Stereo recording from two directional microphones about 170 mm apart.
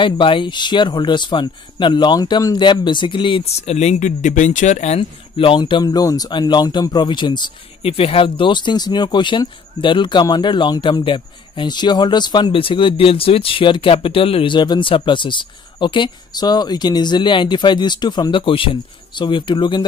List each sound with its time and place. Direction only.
0.0 s speech: 30° left (ahead or behind)